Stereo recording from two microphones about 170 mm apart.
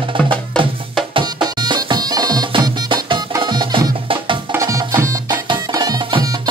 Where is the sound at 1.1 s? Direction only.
30° right (ahead or behind).